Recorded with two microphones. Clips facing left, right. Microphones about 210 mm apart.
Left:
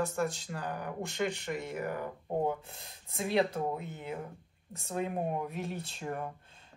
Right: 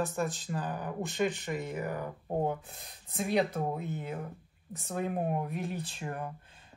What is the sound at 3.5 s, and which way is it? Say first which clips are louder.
Speech: right 1 dB; centre (ahead or behind).